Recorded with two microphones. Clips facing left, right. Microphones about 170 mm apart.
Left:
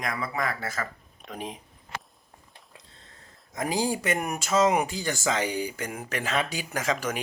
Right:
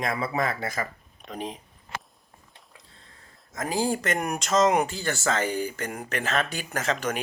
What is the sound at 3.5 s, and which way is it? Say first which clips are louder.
Speech: right 1 dB; 15° left (ahead or behind).